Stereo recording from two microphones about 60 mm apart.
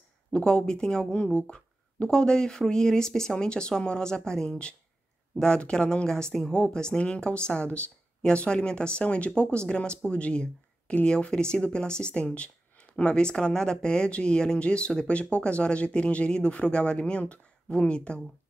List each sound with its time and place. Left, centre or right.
0.3 s speech: centre